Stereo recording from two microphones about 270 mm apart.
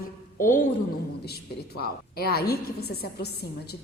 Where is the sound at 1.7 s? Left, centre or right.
Left.